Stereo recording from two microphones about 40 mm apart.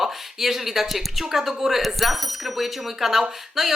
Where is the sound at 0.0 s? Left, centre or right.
Centre.